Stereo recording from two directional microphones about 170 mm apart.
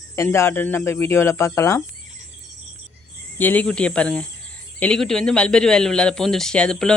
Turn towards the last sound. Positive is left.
turn(degrees=5)  # may be behind; listen again after turning